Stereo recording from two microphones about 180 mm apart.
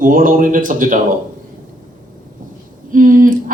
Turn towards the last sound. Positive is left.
turn(degrees=-50)  # may be behind; listen again after turning